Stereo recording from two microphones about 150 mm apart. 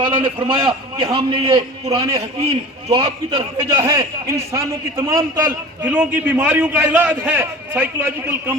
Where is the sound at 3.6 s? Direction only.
20° right (ahead or behind).